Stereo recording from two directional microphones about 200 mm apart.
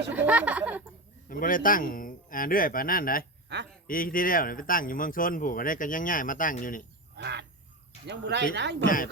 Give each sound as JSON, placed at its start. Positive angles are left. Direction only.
{"t": 0.1, "sound": "speech", "side_deg": -5}
{"t": 1.3, "sound": "speech", "side_deg": 45}
{"t": 3.5, "sound": "speech", "side_deg": -60}
{"t": 3.8, "sound": "speech", "side_deg": 45}
{"t": 7.2, "sound": "speech", "side_deg": -60}